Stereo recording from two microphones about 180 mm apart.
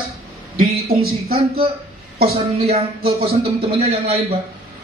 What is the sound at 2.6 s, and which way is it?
A man's voice, 35° right (ahead or behind).